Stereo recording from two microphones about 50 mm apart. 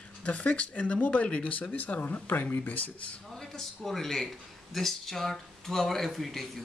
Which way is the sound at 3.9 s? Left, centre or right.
Centre.